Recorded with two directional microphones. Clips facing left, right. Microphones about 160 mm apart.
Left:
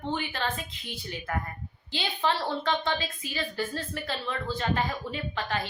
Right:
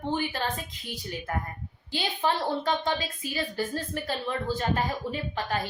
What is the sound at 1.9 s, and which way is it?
A woman's voice, 45° right (ahead or behind).